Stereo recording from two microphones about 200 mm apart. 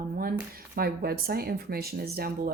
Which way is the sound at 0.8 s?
50° right (ahead or behind).